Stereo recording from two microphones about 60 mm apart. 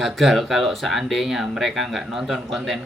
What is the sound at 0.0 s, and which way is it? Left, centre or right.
Speech, centre.